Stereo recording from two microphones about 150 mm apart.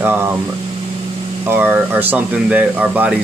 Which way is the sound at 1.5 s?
15° right (ahead or behind).